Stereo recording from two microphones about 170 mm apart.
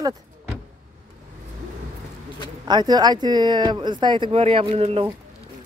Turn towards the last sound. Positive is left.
turn(degrees=-35)  # may be behind; listen again after turning